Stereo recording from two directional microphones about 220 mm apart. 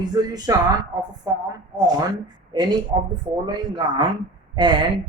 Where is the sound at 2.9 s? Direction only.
20° right (ahead or behind).